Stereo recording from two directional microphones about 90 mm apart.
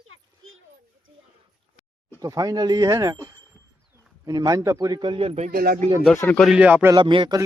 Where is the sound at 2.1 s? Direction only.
40° right (ahead or behind); by 5.3 s 65° right (ahead or behind).